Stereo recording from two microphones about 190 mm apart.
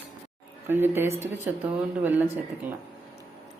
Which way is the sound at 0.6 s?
10° right (ahead or behind).